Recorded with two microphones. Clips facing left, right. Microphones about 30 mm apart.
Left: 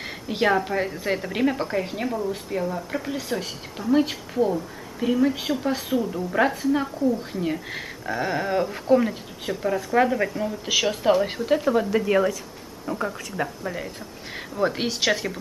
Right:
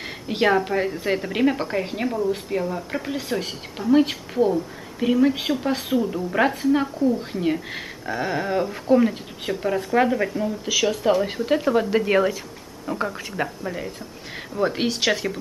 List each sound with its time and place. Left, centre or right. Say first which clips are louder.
0.3 s a woman's voice: right 2 dB; centre
13.7 s speech: right 1 dB; centre